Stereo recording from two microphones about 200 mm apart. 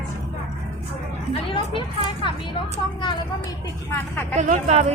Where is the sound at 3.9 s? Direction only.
10° left (ahead or behind).